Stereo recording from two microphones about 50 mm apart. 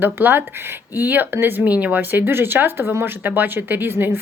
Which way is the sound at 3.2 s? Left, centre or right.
Right.